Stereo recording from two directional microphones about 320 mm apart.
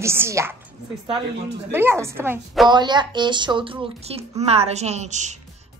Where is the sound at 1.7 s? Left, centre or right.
Centre.